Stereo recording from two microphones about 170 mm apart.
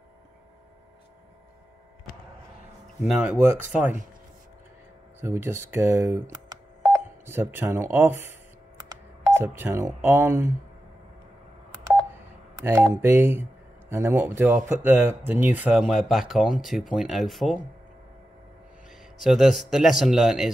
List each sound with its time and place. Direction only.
3.0 s speech: 5° right (ahead or behind)
5.2 s speech: 15° right (ahead or behind)
9.3 s speech: 15° right (ahead or behind)
12.6 s speech: 15° right (ahead or behind)
18.9 s a man's voice: centre (ahead or behind)